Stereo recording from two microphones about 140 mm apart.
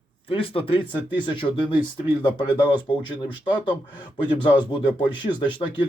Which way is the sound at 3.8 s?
10° right (ahead or behind).